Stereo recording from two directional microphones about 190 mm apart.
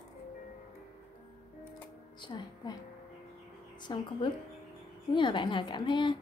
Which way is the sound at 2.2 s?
20° left (ahead or behind).